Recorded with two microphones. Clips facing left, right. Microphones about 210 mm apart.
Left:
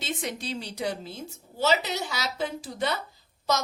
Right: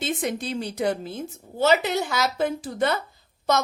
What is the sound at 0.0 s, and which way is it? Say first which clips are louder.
A woman's voice: right 6 dB; 50° right (ahead or behind).